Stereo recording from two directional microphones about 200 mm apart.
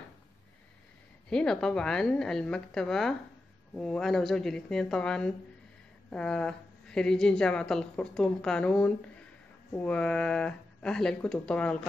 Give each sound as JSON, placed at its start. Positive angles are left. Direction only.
{"t": 1.3, "sound": "a woman's voice", "side_deg": 5}